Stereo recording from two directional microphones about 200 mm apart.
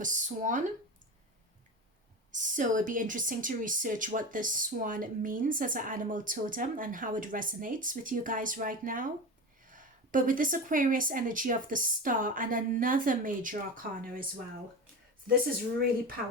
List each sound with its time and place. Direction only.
0.0 s speech: 40° right (ahead or behind)
2.3 s speech: 40° right (ahead or behind)